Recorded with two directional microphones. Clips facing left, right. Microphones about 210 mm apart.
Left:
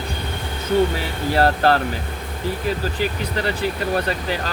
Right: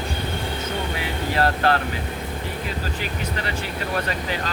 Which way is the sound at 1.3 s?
35° left (ahead or behind).